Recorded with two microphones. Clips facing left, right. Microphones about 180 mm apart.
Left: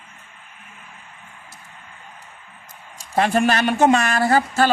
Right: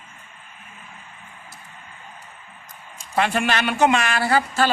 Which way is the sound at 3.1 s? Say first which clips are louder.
Left 3 dB; 40° left (ahead or behind).